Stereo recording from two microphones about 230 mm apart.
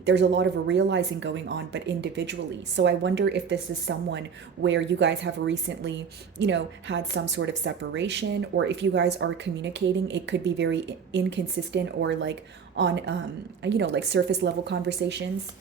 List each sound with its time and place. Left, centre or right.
0.0 s a woman's voice: right